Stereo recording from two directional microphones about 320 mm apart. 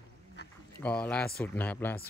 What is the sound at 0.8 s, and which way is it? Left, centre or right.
Speech, centre.